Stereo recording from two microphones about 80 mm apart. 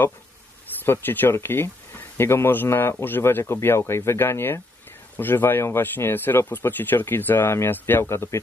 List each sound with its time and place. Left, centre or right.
0.8 s speech: left